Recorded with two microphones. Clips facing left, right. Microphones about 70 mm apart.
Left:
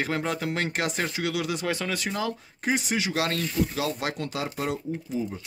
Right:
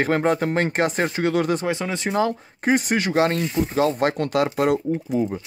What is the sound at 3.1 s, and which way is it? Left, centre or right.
Speech, right.